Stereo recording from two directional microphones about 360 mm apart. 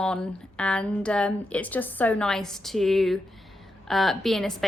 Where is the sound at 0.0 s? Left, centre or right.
Centre.